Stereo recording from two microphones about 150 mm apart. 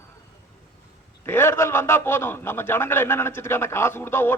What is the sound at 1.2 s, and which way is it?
A man's voice, 15° left (ahead or behind).